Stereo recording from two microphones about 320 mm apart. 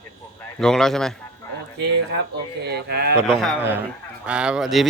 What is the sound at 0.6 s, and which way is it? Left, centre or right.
Speech, centre.